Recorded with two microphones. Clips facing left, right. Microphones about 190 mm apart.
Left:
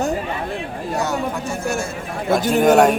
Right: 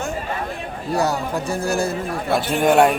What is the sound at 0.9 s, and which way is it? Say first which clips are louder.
Speech: right 2 dB; 35° right (ahead or behind).